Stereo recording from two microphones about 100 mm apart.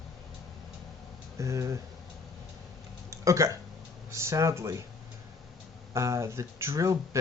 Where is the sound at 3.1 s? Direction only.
30° right (ahead or behind).